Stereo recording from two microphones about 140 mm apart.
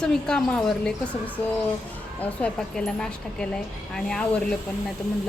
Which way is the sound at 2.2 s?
5° left (ahead or behind).